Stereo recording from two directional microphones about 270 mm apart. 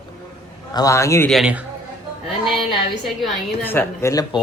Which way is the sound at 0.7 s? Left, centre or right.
Centre.